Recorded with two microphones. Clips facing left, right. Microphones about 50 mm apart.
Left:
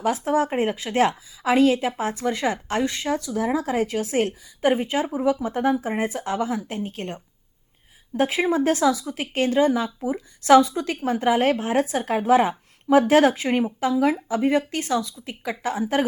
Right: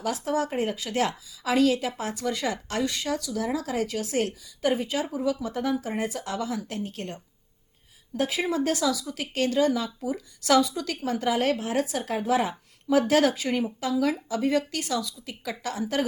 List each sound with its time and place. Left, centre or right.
0.0 s a woman's voice: left